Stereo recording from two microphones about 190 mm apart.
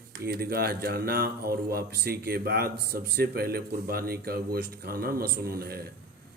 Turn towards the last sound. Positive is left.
turn(degrees=-50)  # may be behind; listen again after turning